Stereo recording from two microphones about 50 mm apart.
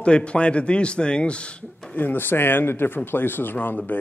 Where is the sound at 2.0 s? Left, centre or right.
Left.